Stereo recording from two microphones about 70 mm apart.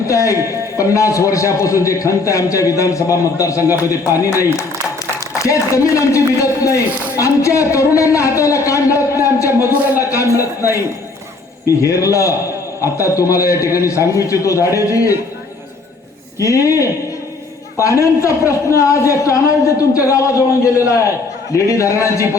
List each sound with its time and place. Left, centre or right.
0.1 s a man's voice: left
9.7 s a man's voice: right
10.0 s a man's voice: left
11.8 s a man's voice: left
16.4 s a man's voice: left